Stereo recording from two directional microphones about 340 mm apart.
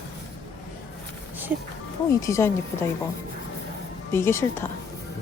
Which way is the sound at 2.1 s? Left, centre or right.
Centre.